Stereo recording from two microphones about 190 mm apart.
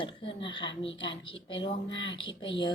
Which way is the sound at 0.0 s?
25° left (ahead or behind).